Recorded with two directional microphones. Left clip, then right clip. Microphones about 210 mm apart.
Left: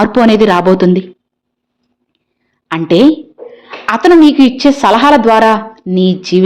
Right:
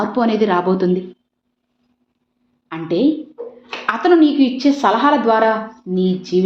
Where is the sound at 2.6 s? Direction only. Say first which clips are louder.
Left 9 dB; 35° left (ahead or behind).